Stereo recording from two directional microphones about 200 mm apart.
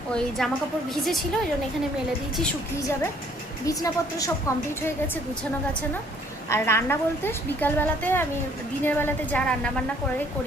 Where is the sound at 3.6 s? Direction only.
15° left (ahead or behind).